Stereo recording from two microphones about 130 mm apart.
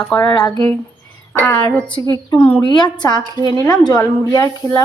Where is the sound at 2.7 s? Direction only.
35° left (ahead or behind).